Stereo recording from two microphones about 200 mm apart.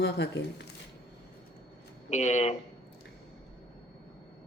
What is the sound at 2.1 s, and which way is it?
Speech, 35° left (ahead or behind).